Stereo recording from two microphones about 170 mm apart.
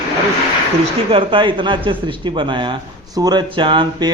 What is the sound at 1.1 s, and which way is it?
A man's voice, 30° right (ahead or behind).